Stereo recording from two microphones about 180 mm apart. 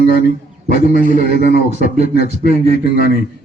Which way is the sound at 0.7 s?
60° left (ahead or behind).